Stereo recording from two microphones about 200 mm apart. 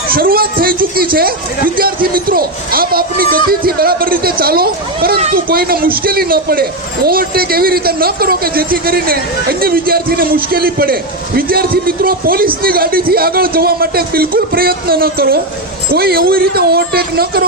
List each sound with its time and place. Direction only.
0.1 s a man's voice: 45° right (ahead or behind)